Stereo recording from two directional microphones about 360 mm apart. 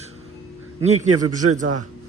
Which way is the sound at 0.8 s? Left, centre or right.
Centre.